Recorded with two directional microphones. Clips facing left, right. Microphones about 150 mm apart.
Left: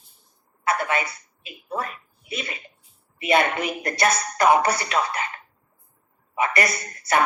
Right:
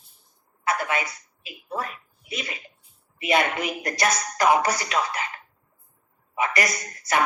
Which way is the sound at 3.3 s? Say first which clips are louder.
Left 2 dB; 50° left (ahead or behind).